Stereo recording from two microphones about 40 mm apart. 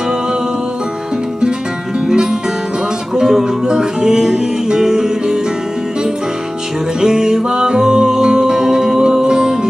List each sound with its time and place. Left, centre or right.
3.2 s music: centre
7.0 s music: centre